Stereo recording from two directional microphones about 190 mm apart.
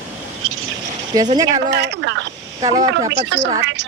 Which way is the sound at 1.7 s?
65° right (ahead or behind).